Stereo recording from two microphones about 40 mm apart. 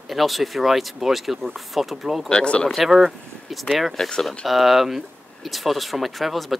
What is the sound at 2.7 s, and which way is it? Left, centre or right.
Speech, centre.